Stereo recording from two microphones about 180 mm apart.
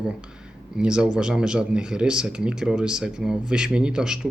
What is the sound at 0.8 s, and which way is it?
Speech, 5° right (ahead or behind).